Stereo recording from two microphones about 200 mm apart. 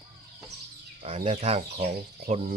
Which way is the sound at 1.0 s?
30° right (ahead or behind).